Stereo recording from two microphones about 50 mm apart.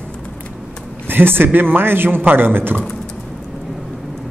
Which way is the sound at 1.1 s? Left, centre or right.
Right.